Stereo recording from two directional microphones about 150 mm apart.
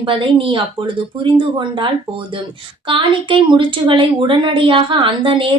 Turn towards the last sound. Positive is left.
turn(degrees=-35)  # may be behind; listen again after turning